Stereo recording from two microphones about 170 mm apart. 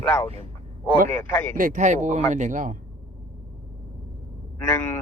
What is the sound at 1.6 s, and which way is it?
Speech, 50° right (ahead or behind).